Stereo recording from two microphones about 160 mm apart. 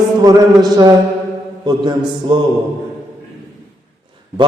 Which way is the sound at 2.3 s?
30° right (ahead or behind).